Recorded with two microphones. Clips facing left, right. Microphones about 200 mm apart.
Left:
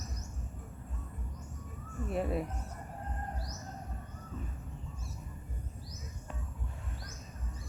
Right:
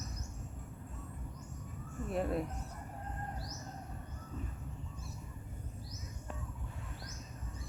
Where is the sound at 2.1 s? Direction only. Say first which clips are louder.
Left 1 dB; 5° left (ahead or behind).